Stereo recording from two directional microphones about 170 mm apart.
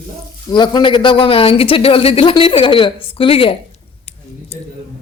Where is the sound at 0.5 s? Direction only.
25° left (ahead or behind).